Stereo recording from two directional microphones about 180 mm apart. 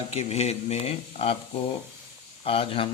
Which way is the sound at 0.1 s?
35° left (ahead or behind).